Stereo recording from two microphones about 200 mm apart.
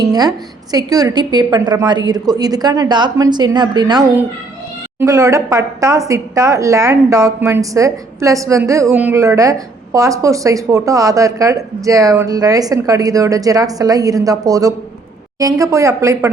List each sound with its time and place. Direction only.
0.0 s a woman's voice: 20° right (ahead or behind)